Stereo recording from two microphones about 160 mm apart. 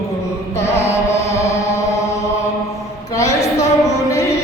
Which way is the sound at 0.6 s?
40° left (ahead or behind).